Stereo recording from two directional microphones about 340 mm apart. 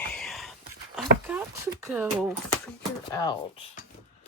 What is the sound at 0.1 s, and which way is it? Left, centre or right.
Whispering, centre.